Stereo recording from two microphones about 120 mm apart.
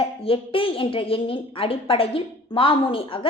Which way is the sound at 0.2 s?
50° left (ahead or behind).